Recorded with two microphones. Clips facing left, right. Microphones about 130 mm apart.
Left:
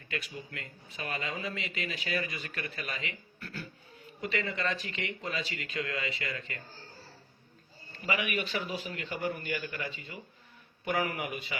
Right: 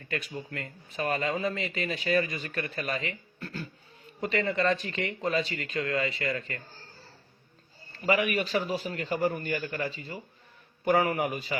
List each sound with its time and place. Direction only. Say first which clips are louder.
0.1 s a man's voice: right 4 dB; 40° right (ahead or behind)
5.0 s a man's voice: right 8 dB; 50° right (ahead or behind)
8.0 s a man's voice: right 6 dB; 40° right (ahead or behind)